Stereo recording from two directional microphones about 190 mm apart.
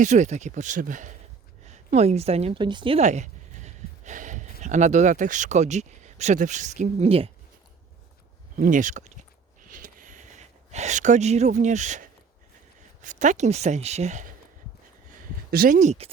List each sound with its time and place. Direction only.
0.0 s a woman's voice: 40° right (ahead or behind)
3.0 s a sound: 40° right (ahead or behind)
4.6 s speech: 40° right (ahead or behind)
8.5 s speech: 45° right (ahead or behind)
9.6 s a sound: 45° right (ahead or behind)
13.0 s speech: 40° right (ahead or behind)
15.4 s speech: 50° right (ahead or behind)